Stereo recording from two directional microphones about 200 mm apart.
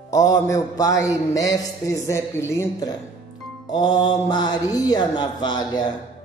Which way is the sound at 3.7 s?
20° left (ahead or behind).